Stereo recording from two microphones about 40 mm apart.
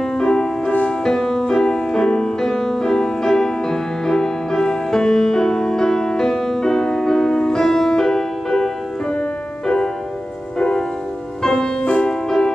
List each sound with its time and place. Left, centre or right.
0.2 s music: centre
0.7 s music: left
1.0 s music: centre
10.6 s music: left
11.8 s music: left
12.1 s music: centre